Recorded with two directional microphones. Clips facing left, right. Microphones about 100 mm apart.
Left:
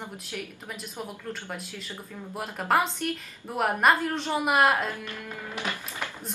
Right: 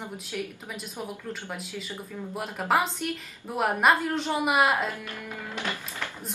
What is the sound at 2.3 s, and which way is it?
Speech, centre (ahead or behind).